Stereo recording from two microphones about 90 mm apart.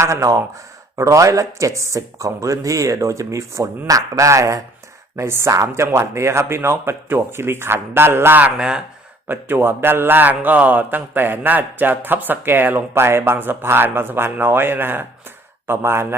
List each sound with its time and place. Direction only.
0.0 s a man's voice: 35° right (ahead or behind)
8.5 s speech: 10° right (ahead or behind)
9.2 s a man's voice: 25° right (ahead or behind)